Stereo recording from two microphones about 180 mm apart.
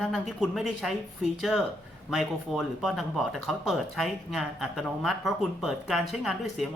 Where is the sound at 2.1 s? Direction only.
Centre (ahead or behind).